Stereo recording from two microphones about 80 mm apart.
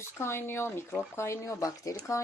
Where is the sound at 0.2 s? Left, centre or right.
Left.